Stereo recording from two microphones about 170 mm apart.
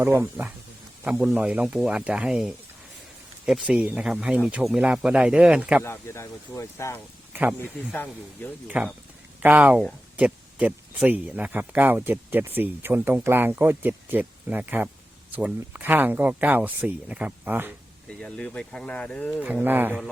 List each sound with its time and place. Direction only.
0.0 s speech: 10° right (ahead or behind)
5.8 s speech: 15° left (ahead or behind)
8.6 s speech: 10° right (ahead or behind)
18.1 s speech: 5° left (ahead or behind)
19.4 s speech: 10° right (ahead or behind)